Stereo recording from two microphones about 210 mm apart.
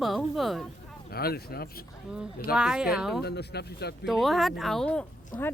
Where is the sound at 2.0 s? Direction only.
5° right (ahead or behind).